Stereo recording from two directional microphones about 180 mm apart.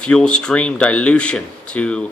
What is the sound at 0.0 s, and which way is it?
Speech, 5° left (ahead or behind).